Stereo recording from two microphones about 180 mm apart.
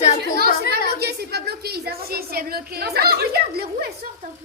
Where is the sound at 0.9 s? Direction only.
60° right (ahead or behind).